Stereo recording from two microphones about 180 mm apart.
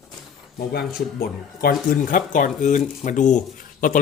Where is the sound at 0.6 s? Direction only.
60° left (ahead or behind).